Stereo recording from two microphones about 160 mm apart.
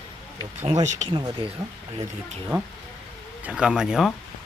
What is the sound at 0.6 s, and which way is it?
Speech, 45° right (ahead or behind).